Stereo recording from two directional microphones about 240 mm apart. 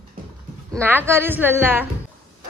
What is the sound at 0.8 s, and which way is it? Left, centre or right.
A woman's voice, centre.